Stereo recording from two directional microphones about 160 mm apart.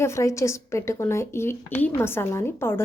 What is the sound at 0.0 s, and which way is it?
A woman's voice, 20° left (ahead or behind).